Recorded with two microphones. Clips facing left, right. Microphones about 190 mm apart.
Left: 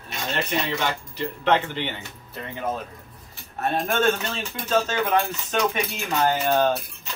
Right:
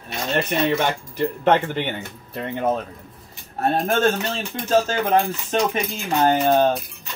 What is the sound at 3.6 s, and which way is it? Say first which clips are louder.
Speech: right 4 dB; 35° right (ahead or behind).